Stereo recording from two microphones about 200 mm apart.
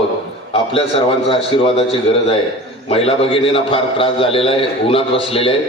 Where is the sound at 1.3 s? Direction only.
25° left (ahead or behind).